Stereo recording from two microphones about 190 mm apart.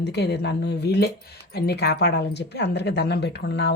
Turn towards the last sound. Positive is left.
turn(degrees=65)  # may be behind; listen again after turning